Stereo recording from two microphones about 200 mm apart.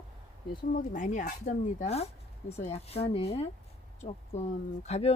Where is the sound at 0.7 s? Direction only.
40° left (ahead or behind).